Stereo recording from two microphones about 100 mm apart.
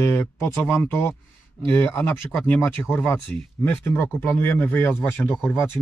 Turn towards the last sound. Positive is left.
turn(degrees=25)  # may be behind; listen again after turning